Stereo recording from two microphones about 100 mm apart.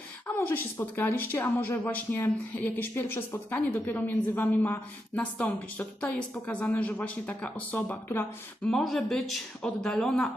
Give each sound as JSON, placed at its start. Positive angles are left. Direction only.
{"t": 0.3, "sound": "a woman's voice", "side_deg": 20}
{"t": 8.6, "sound": "speech", "side_deg": 5}